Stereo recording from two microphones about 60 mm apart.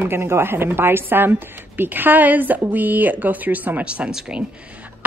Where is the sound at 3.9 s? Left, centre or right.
Centre.